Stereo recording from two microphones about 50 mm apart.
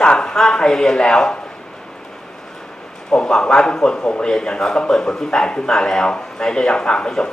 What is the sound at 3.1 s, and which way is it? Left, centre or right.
Speech, centre.